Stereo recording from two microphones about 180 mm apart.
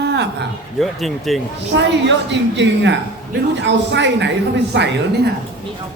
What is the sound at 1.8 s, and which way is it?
A woman's voice, 80° right.